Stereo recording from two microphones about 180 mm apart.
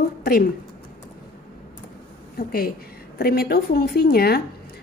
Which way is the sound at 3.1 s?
60° left (ahead or behind).